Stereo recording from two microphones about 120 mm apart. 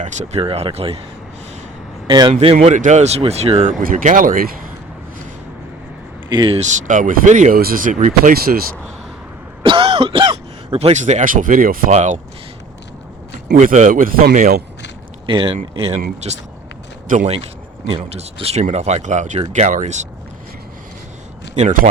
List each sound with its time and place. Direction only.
0.0 s speech: 80° right; by 1.0 s 55° right (ahead or behind)
2.0 s speech: 40° right (ahead or behind)
2.4 s speech: 55° right (ahead or behind); by 4.3 s 85° right
6.2 s speech: 40° right (ahead or behind)
6.6 s speech: 90° right
9.6 s throat clearing: 50° right (ahead or behind)
10.9 s speech: 75° right (ahead or behind)
13.6 s speech: 90° right
15.3 s speech: 45° right (ahead or behind)
17.1 s speech: 75° right (ahead or behind); by 19.4 s 90° right
19.4 s speech: 75° right (ahead or behind)
21.5 s a man's voice: 75° right (ahead or behind)